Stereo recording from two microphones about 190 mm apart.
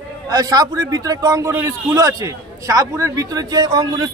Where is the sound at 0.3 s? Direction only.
20° right (ahead or behind).